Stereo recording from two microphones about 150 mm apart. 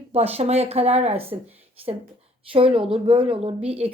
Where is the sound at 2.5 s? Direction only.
35° right (ahead or behind).